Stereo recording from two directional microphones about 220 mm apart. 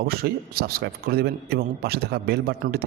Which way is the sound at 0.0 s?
45° right (ahead or behind).